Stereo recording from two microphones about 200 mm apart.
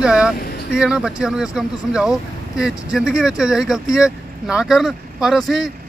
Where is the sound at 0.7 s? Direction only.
5° right (ahead or behind).